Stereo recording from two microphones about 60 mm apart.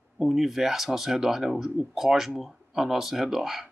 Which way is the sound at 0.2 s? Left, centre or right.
Centre.